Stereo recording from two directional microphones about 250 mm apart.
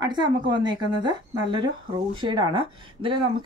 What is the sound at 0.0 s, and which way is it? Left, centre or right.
Speech, centre.